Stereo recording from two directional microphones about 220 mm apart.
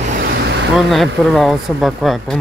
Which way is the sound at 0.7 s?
Centre (ahead or behind).